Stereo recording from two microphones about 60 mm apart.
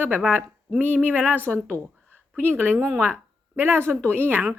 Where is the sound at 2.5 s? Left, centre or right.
Right.